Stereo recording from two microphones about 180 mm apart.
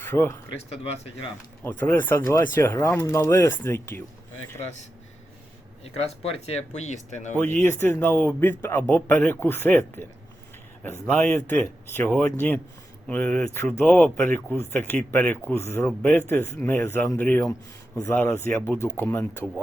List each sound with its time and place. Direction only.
0.1 s speech: 15° left (ahead or behind)
0.7 s speech: 35° left (ahead or behind)
1.6 s speech: 10° left (ahead or behind)
5.8 s speech: 35° left (ahead or behind)
7.6 s speech: 10° left (ahead or behind)